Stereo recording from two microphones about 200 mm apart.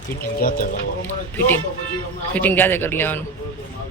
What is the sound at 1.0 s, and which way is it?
Speech, 10° left (ahead or behind).